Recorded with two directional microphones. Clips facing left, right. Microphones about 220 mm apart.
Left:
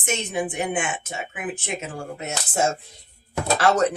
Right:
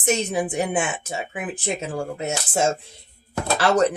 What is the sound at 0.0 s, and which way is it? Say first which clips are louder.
Speech: right 4 dB; 35° right (ahead or behind).